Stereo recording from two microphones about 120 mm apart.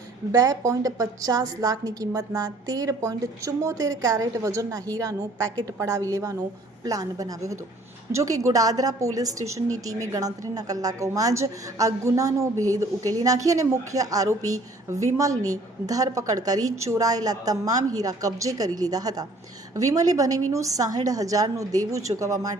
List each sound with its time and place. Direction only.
0.3 s a woman's voice: 30° right (ahead or behind)